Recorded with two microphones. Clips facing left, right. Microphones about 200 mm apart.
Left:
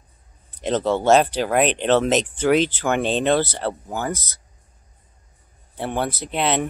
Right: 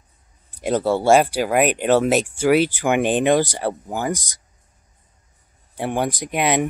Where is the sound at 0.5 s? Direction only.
10° right (ahead or behind).